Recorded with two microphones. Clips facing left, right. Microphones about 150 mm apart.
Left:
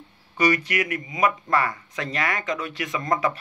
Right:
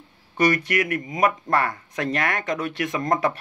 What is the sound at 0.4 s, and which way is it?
A man's voice, 55° right (ahead or behind).